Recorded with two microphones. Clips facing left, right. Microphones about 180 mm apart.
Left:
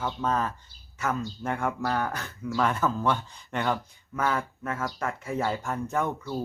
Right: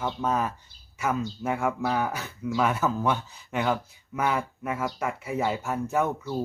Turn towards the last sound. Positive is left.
turn(degrees=-5)  # may be behind; listen again after turning